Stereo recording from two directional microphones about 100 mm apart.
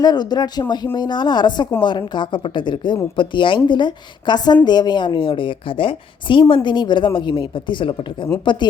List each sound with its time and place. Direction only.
0.0 s a woman's voice: 45° left (ahead or behind)